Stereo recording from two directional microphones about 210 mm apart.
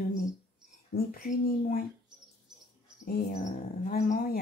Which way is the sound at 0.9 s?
40° left (ahead or behind).